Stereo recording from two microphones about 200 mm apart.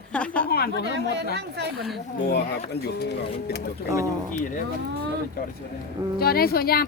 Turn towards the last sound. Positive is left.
turn(degrees=50)  # may be behind; listen again after turning